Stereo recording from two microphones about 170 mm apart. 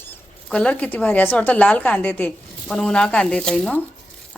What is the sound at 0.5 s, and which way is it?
A woman's voice, 5° left (ahead or behind).